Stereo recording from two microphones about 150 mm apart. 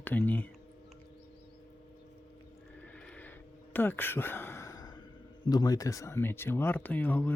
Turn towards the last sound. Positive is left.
turn(degrees=10)  # may be behind; listen again after turning